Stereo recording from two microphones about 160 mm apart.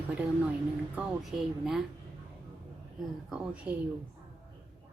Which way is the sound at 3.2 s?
5° right (ahead or behind).